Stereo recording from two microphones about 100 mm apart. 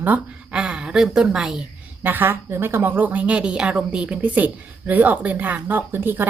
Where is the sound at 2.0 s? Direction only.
20° right (ahead or behind).